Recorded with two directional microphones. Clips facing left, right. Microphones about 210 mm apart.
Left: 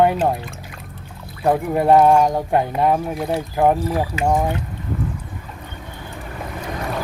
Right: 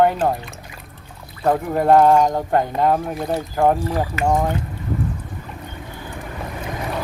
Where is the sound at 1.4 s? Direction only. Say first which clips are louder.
Left 1 dB; 10° left (ahead or behind).